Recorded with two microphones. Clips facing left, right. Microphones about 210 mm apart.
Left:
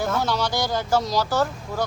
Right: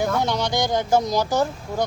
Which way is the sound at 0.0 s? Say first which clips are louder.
Right 2 dB; 15° right (ahead or behind).